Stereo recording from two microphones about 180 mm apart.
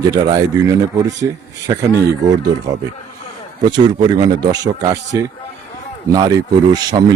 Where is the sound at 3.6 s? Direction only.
20° right (ahead or behind).